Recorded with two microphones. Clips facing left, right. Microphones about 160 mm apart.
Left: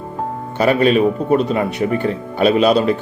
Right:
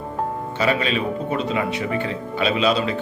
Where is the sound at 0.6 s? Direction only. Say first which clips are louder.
Left 9 dB; 50° left (ahead or behind).